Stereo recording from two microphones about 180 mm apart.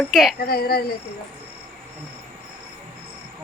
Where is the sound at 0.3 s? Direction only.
60° left (ahead or behind).